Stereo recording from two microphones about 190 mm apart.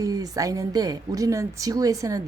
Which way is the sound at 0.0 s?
20° right (ahead or behind).